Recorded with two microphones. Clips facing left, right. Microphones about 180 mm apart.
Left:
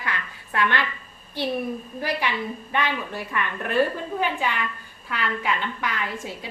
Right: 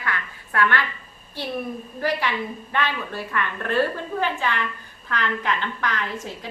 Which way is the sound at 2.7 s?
15° left (ahead or behind).